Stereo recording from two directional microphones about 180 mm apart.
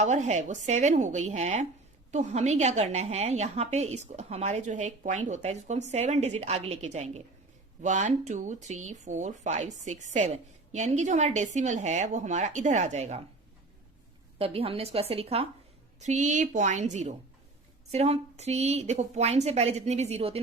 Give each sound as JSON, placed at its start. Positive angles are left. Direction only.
{"t": 0.0, "sound": "a woman's voice", "side_deg": -40}
{"t": 14.3, "sound": "a woman's voice", "side_deg": -30}